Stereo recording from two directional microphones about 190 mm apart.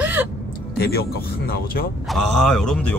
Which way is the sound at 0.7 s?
55° left (ahead or behind).